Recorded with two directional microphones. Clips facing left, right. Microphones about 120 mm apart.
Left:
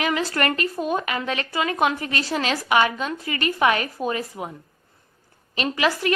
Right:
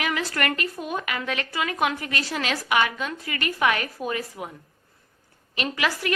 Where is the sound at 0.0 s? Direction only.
30° left (ahead or behind).